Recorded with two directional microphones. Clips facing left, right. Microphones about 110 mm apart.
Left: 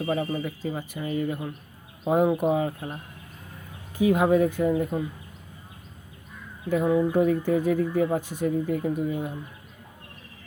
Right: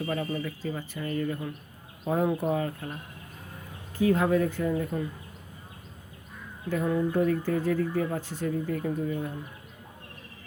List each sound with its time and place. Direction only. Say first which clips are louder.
0.0 s speech: left 4 dB; 20° left (ahead or behind)
6.7 s speech: left 5 dB; 10° left (ahead or behind)